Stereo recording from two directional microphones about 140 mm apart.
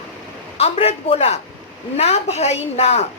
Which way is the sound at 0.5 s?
45° left (ahead or behind).